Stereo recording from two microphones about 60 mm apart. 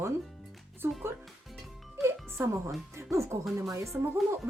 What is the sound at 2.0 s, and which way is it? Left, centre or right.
Speech, right.